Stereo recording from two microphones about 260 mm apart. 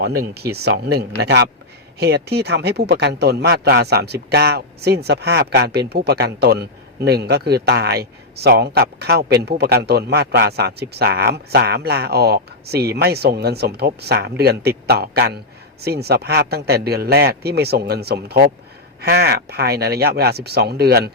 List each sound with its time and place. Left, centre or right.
0.0 s speech: right